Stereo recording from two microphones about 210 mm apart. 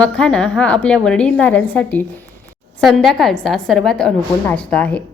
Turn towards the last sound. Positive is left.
turn(degrees=5)  # may be behind; listen again after turning